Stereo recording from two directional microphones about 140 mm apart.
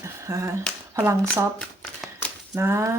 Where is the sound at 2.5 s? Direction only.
20° right (ahead or behind).